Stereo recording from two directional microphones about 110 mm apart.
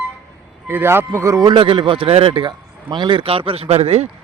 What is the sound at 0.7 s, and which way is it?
Speech, 20° right (ahead or behind).